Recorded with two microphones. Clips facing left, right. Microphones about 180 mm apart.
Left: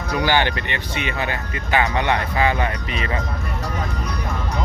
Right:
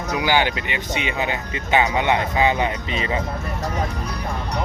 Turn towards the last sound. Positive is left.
turn(degrees=-25)  # may be behind; listen again after turning